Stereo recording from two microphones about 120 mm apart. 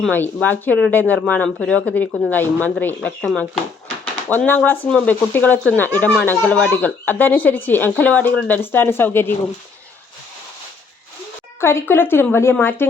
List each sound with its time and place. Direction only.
0.1 s speech: 15° left (ahead or behind)
11.6 s a woman's voice: 20° left (ahead or behind)